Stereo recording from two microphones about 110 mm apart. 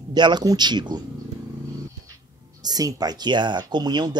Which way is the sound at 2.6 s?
35° right (ahead or behind).